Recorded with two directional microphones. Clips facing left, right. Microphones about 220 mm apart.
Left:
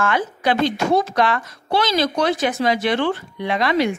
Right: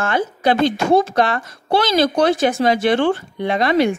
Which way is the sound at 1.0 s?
45° right (ahead or behind).